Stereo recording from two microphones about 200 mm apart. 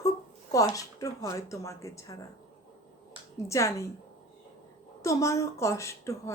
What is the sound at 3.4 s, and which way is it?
Speech, 15° left (ahead or behind).